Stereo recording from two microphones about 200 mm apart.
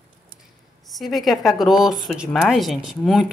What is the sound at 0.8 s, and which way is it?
Speech, centre (ahead or behind).